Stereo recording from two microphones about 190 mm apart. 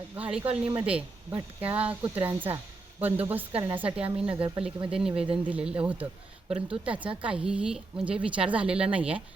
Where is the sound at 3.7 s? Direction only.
5° right (ahead or behind).